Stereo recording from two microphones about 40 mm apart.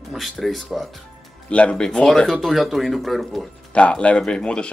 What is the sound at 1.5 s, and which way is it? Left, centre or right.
Speech, left.